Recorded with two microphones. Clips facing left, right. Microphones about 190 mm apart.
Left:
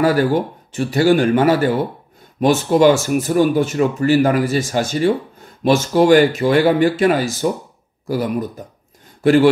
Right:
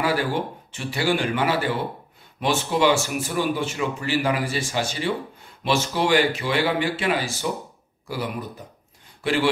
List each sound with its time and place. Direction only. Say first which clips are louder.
0.0 s speech: left 8 dB; 45° left (ahead or behind)